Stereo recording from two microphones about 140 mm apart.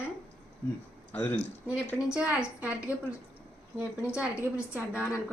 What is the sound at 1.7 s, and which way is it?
A woman's voice, 5° right (ahead or behind).